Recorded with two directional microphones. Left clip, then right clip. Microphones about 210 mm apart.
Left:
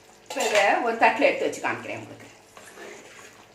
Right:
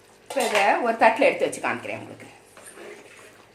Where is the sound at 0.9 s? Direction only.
55° right (ahead or behind).